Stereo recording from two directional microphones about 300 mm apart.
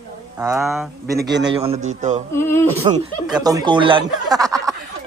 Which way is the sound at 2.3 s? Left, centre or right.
Centre.